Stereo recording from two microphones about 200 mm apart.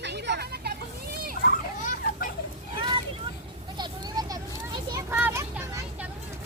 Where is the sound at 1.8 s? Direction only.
40° left (ahead or behind).